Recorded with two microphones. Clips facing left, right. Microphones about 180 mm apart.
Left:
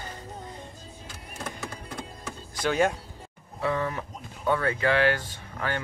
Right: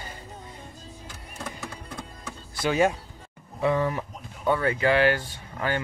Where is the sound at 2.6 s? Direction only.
5° right (ahead or behind).